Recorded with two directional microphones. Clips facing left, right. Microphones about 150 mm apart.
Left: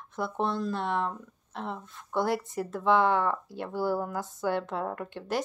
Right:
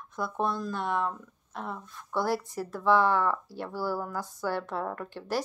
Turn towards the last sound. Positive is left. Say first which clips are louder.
# left 1 dB
turn(degrees=20)  # may be behind; listen again after turning